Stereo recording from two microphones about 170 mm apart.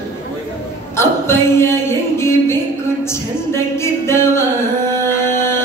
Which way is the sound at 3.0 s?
15° left (ahead or behind).